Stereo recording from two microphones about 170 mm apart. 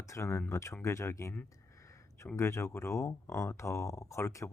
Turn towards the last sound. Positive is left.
turn(degrees=15)  # may be behind; listen again after turning